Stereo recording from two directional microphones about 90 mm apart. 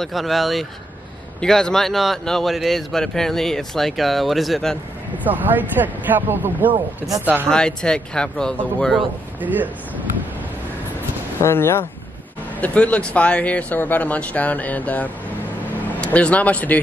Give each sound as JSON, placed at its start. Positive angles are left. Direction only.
{"t": 0.0, "sound": "speech", "side_deg": 0}
{"t": 5.2, "sound": "speech", "side_deg": -20}
{"t": 7.4, "sound": "speech", "side_deg": 10}
{"t": 9.4, "sound": "speech", "side_deg": -20}
{"t": 11.4, "sound": "speech", "side_deg": 30}
{"t": 12.5, "sound": "speech", "side_deg": 15}